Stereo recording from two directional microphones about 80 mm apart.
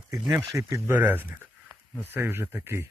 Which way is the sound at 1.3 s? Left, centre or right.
Right.